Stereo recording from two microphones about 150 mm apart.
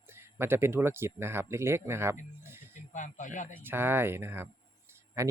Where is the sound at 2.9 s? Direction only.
55° left (ahead or behind).